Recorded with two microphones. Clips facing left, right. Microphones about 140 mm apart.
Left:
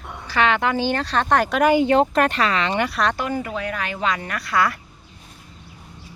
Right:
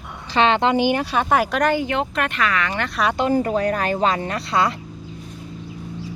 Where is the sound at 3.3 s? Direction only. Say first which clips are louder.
Right 7 dB; 40° right (ahead or behind); by 4.7 s 25° right (ahead or behind).